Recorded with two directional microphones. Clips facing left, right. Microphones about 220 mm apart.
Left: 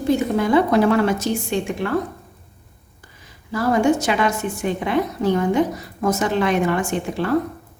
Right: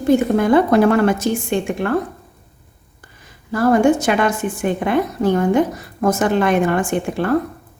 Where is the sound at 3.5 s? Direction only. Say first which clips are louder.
Right 4 dB; 50° right (ahead or behind).